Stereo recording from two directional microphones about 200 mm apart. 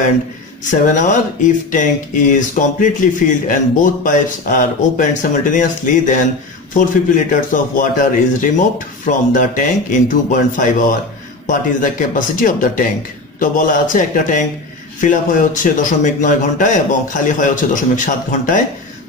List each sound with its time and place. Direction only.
0.7 s speech: 40° left (ahead or behind)